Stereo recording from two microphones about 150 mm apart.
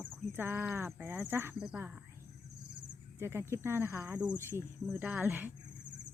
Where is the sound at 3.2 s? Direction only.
15° right (ahead or behind).